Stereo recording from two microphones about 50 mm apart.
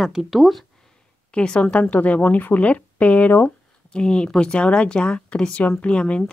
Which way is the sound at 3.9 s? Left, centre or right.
Centre.